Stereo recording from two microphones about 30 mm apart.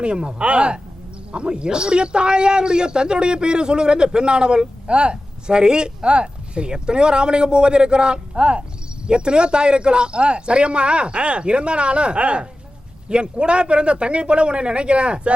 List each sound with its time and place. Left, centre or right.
0.0 s a man's voice: right